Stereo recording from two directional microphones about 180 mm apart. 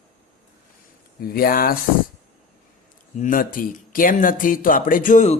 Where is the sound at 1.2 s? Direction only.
55° left (ahead or behind).